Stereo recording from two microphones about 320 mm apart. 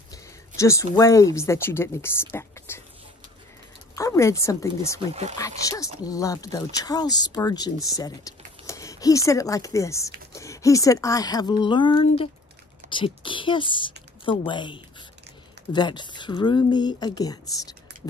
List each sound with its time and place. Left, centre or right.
0.6 s speech: centre
3.9 s speech: centre